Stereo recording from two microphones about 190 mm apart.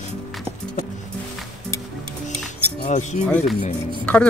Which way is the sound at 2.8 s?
40° left (ahead or behind).